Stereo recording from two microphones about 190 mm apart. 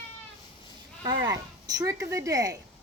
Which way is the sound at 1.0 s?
20° right (ahead or behind).